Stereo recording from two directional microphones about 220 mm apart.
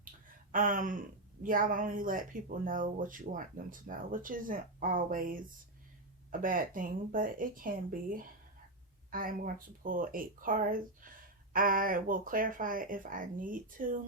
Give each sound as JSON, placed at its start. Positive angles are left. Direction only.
{"t": 0.5, "sound": "speech", "side_deg": -40}